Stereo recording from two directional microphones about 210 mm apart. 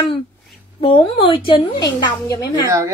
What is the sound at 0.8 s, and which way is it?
A woman's voice, 25° left (ahead or behind).